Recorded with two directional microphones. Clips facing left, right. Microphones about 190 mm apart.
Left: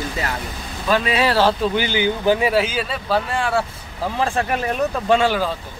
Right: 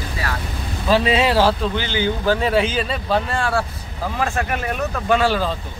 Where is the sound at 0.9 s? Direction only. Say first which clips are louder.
Right 2 dB; 25° right (ahead or behind).